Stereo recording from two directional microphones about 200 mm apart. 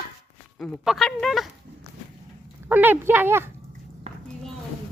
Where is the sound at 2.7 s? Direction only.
10° right (ahead or behind).